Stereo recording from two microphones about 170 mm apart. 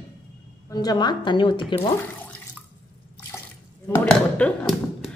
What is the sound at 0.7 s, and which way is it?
Speech, 20° left (ahead or behind).